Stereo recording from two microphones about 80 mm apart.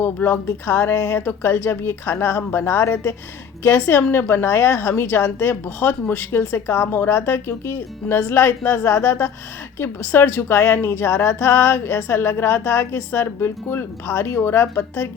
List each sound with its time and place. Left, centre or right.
0.0 s a woman's voice: left